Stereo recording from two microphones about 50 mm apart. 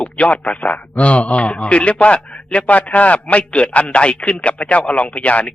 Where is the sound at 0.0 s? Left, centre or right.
Left.